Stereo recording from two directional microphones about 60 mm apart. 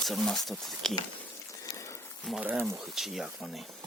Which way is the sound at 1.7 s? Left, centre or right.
Left.